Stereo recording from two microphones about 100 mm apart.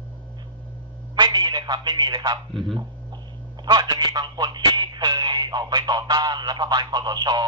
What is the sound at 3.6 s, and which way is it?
Speech, 45° right (ahead or behind).